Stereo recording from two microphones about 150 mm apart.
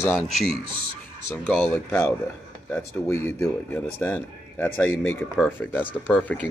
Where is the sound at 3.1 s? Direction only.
15° left (ahead or behind).